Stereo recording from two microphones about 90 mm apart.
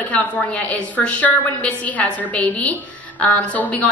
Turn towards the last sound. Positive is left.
turn(degrees=15)  # may be behind; listen again after turning